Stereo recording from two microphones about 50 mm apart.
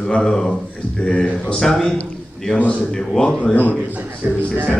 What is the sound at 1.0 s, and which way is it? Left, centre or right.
A man's voice, centre.